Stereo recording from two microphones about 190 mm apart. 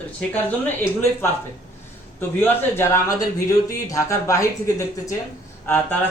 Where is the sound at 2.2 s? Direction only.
10° left (ahead or behind).